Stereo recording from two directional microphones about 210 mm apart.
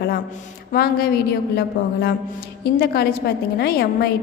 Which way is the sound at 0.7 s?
45° left (ahead or behind).